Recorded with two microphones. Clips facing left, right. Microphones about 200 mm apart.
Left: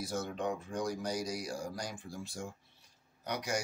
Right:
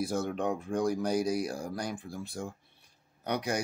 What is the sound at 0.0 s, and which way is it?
Speech, 55° right (ahead or behind).